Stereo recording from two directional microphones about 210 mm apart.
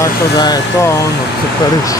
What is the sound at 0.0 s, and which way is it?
Speech, 15° left (ahead or behind).